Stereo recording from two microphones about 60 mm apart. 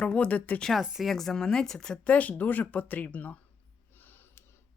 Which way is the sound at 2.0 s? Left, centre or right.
Left.